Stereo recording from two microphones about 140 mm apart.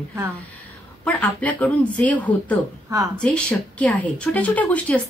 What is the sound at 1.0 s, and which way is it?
Speech, 10° left (ahead or behind).